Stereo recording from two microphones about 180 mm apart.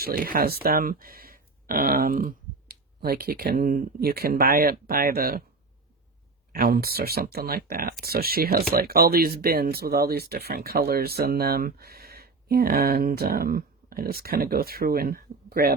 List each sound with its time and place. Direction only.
0.0 s speech: 55° right (ahead or behind)
6.5 s speech: 60° right (ahead or behind)